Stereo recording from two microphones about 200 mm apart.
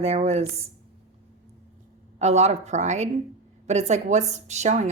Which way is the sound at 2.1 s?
35° right (ahead or behind).